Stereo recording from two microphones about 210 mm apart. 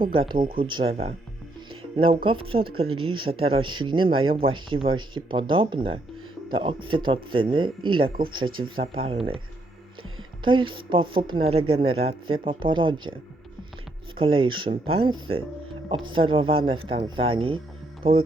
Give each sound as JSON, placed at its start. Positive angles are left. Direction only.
{"t": 0.1, "sound": "speech", "side_deg": -25}
{"t": 10.4, "sound": "speech", "side_deg": -25}
{"t": 14.2, "sound": "speech", "side_deg": -25}